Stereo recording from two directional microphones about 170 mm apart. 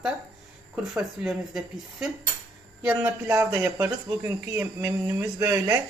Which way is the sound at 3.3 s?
20° right (ahead or behind).